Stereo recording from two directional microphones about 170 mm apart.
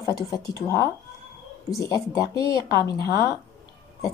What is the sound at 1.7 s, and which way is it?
Speech, 20° left (ahead or behind).